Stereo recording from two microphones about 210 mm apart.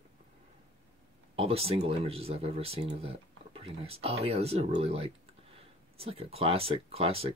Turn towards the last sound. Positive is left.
turn(degrees=-30)  # may be behind; listen again after turning